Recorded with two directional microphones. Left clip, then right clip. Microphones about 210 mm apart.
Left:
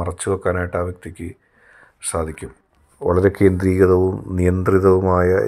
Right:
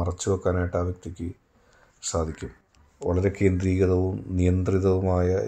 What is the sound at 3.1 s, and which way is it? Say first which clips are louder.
Speech: left 9 dB; 10° left (ahead or behind).